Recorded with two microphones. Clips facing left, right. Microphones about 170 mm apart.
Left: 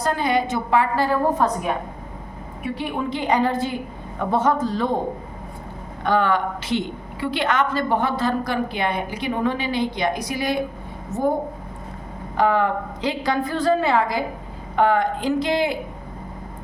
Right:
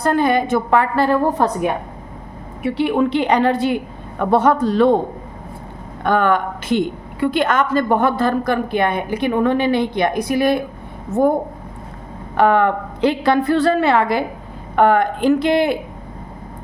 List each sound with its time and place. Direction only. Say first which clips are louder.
0.0 s a woman's voice: right 5 dB; 55° right (ahead or behind)
2.6 s a woman's voice: right 9 dB; 75° right (ahead or behind)
6.0 s a woman's voice: right 3 dB; 55° right (ahead or behind)
12.4 s a woman's voice: right 5 dB; 65° right (ahead or behind)